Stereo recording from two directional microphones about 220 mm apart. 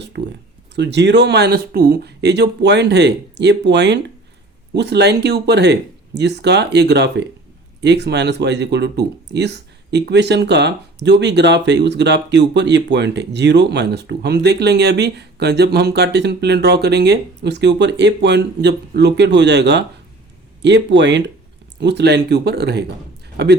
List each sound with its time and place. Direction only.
0.8 s speech: 50° right (ahead or behind)